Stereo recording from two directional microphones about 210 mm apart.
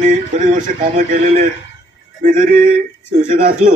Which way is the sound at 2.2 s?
40° right (ahead or behind).